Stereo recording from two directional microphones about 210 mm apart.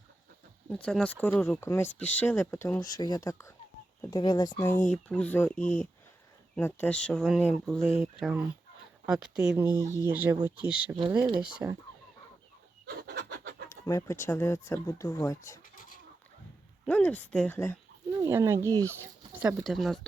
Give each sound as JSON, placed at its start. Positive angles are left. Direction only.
{"t": 0.7, "sound": "speech", "side_deg": 5}
{"t": 10.9, "sound": "speech", "side_deg": -20}
{"t": 11.3, "sound": "speech", "side_deg": -10}
{"t": 12.8, "sound": "fowl", "side_deg": -55}
{"t": 13.7, "sound": "speech", "side_deg": 15}
{"t": 16.8, "sound": "speech", "side_deg": 5}
{"t": 18.1, "sound": "speech", "side_deg": -15}